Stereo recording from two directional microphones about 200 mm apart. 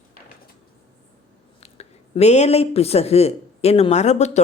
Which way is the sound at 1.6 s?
30° left (ahead or behind).